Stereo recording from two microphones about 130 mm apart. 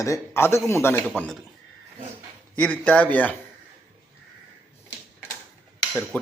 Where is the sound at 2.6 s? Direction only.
10° left (ahead or behind).